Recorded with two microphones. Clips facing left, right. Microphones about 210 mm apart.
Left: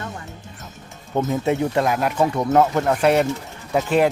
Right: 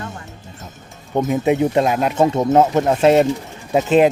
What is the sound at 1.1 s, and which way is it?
Speech, 15° right (ahead or behind).